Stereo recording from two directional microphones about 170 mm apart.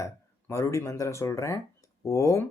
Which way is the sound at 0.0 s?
15° left (ahead or behind).